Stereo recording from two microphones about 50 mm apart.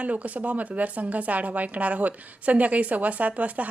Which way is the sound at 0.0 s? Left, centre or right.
Right.